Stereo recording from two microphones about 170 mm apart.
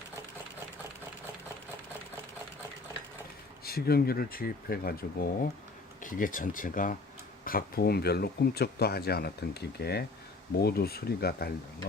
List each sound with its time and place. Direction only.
3.6 s speech: 65° left (ahead or behind)